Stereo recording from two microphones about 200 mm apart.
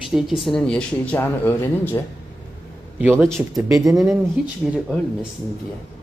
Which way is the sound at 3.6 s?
15° right (ahead or behind).